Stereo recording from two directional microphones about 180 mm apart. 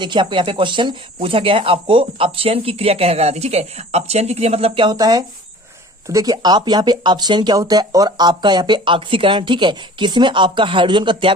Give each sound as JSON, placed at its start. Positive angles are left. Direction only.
{"t": 0.0, "sound": "speech", "side_deg": -25}